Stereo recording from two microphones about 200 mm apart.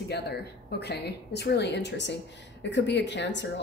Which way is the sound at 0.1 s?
55° left (ahead or behind).